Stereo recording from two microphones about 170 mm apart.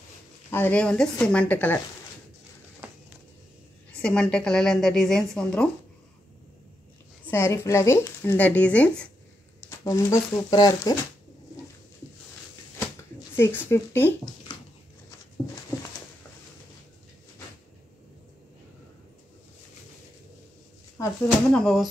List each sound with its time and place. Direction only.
0.5 s speech: 10° left (ahead or behind)
3.9 s a woman's voice: 5° left (ahead or behind)
7.2 s speech: 10° left (ahead or behind)
9.7 s speech: 15° left (ahead or behind)
13.4 s speech: 15° left (ahead or behind)
21.5 s a woman's voice: centre (ahead or behind)